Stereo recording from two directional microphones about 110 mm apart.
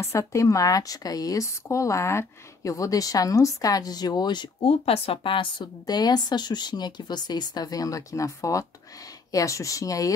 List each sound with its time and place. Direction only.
0.0 s speech: 30° left (ahead or behind)
4.6 s speech: 65° left (ahead or behind); by 10.1 s 30° left (ahead or behind)